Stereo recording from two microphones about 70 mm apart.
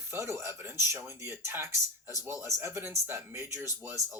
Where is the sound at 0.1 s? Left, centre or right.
Right.